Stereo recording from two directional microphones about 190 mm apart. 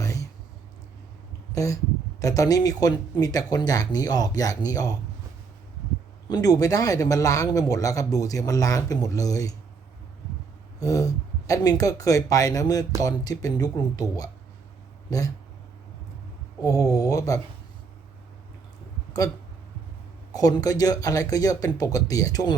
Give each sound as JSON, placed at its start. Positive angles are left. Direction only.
{"t": 0.0, "sound": "a sound", "side_deg": 15}
{"t": 1.5, "sound": "speech", "side_deg": 15}
{"t": 6.2, "sound": "speech", "side_deg": 20}
{"t": 10.8, "sound": "speech", "side_deg": 20}
{"t": 16.6, "sound": "speech", "side_deg": 20}
{"t": 20.3, "sound": "speech", "side_deg": 20}